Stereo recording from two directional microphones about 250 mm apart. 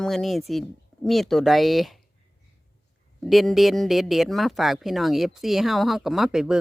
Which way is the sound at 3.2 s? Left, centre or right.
Centre.